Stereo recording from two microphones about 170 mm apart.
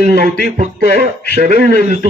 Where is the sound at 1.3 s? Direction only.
60° right (ahead or behind).